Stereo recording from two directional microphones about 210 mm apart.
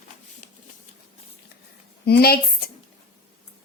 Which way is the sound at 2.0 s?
50° left (ahead or behind).